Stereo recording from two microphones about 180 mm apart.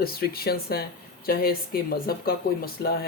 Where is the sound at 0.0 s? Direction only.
55° left (ahead or behind).